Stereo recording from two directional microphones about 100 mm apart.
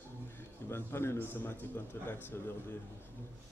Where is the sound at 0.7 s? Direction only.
25° left (ahead or behind).